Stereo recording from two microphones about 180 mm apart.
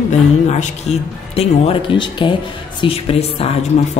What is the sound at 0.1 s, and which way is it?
Speech, 40° left (ahead or behind).